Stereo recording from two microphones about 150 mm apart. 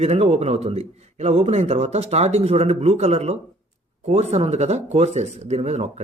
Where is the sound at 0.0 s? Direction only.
45° right (ahead or behind).